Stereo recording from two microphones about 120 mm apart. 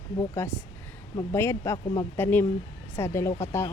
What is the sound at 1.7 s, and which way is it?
Speech, 40° left (ahead or behind).